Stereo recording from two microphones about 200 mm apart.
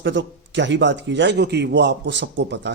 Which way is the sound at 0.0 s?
60° right (ahead or behind).